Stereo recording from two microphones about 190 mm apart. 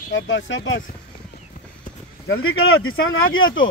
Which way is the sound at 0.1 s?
80° left.